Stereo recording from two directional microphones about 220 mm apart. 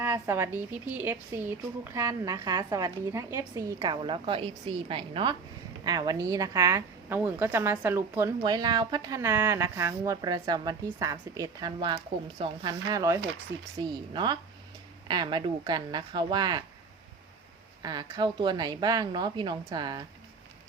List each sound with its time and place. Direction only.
0.0 s a woman's voice: 10° right (ahead or behind)
17.8 s a woman's voice: 20° right (ahead or behind)